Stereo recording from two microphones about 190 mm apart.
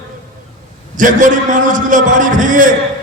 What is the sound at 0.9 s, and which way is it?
A man's voice, 45° right (ahead or behind).